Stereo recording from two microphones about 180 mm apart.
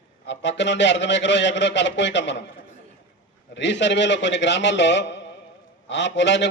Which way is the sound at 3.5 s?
80° left.